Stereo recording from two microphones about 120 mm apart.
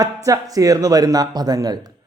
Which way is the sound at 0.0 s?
30° right (ahead or behind).